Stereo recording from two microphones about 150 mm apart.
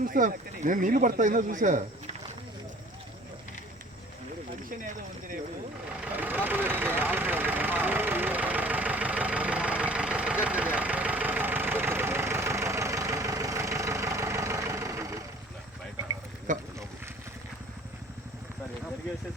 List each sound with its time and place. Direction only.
0.0 s speech: 65° right (ahead or behind)
6.0 s vehicle: 10° right (ahead or behind)
16.5 s a sound: 60° right (ahead or behind)